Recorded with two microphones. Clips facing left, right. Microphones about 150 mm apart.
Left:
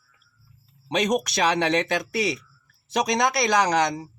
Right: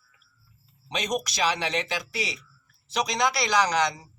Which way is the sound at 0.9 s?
60° left (ahead or behind).